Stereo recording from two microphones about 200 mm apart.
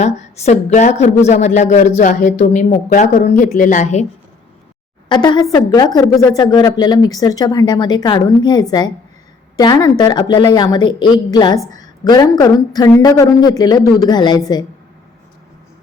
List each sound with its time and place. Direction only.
0.0 s a woman's voice: 35° left (ahead or behind)
5.0 s speech: 20° left (ahead or behind)